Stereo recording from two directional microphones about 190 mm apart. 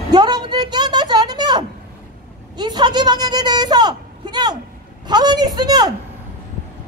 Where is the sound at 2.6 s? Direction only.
20° right (ahead or behind).